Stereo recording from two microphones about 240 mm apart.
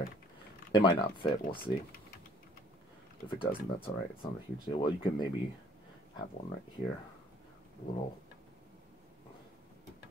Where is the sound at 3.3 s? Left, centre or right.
Left.